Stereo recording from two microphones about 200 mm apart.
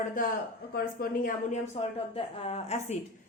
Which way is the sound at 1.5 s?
35° left (ahead or behind).